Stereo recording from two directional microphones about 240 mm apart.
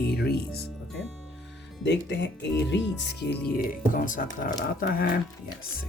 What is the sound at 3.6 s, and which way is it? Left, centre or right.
Speech, left.